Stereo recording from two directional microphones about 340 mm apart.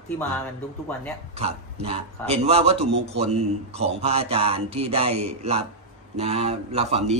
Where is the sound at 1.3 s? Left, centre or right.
Centre.